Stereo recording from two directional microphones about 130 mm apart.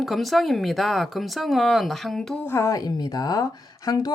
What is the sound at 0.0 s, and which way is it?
Speech, centre (ahead or behind).